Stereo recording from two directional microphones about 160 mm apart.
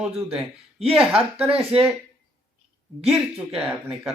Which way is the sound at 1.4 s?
35° right (ahead or behind).